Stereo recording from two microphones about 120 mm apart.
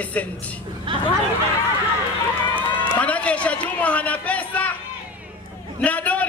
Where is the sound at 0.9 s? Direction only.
40° right (ahead or behind).